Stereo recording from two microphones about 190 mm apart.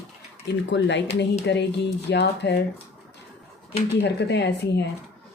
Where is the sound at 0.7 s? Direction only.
65° left (ahead or behind).